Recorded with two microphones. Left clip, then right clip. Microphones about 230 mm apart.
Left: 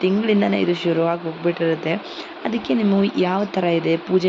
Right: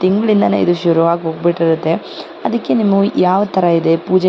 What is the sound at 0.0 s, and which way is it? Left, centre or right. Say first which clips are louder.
Speech: right 5 dB; right.